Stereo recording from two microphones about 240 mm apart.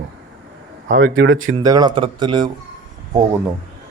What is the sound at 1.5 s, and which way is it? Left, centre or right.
Speech, centre.